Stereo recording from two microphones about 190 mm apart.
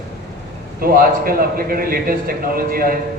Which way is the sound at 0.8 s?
50° right (ahead or behind).